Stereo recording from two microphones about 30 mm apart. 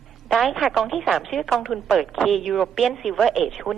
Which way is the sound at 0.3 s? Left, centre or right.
Centre.